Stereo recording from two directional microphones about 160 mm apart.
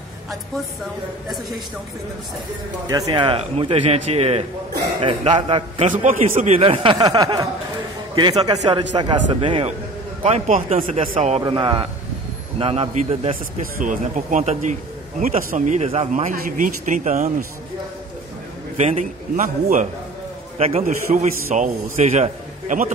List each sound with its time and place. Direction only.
2.9 s a man's voice: 25° right (ahead or behind)
5.9 s a man's voice: 50° right (ahead or behind)
6.6 s a man's voice: 35° right (ahead or behind)
11.4 s a man's voice: 30° right (ahead or behind)
13.7 s a man's voice: 50° right (ahead or behind)
18.8 s a man's voice: 45° right (ahead or behind)
20.5 s a man's voice: 40° right (ahead or behind)